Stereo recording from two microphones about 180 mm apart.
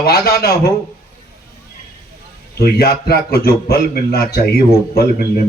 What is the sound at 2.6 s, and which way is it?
A man's voice, 60° left (ahead or behind).